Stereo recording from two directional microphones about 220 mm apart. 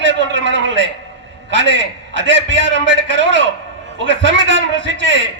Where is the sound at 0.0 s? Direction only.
55° right (ahead or behind).